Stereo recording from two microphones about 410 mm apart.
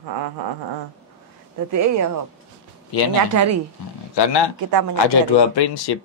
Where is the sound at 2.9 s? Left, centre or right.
Left.